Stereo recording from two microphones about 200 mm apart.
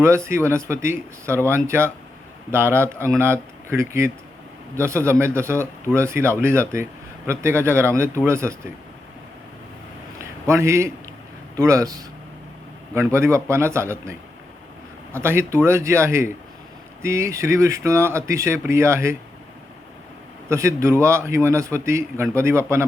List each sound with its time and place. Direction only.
0.0 s a man's voice: 15° right (ahead or behind)
10.2 s a sound: 15° right (ahead or behind)
11.5 s a man's voice: 15° right (ahead or behind)
13.1 s a man's voice: 15° right (ahead or behind)
20.5 s a man's voice: 15° right (ahead or behind)